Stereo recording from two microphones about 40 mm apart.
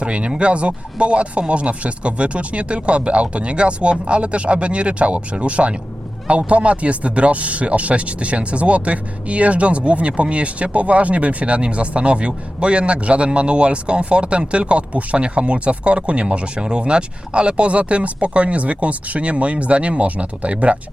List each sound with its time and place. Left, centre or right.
0.0 s speech: right